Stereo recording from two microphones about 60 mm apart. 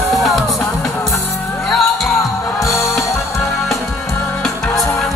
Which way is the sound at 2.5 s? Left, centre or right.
Left.